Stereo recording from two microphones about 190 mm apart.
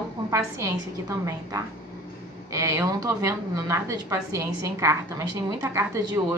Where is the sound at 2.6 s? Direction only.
15° right (ahead or behind).